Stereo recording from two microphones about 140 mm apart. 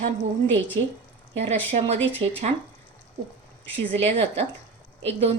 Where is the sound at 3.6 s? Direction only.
10° left (ahead or behind).